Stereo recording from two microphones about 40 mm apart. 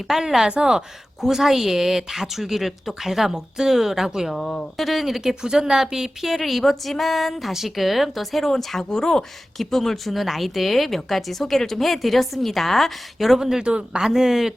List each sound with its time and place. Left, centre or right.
0.0 s speech: centre
9.6 s speech: centre
13.6 s a man's voice: right
14.1 s speech: centre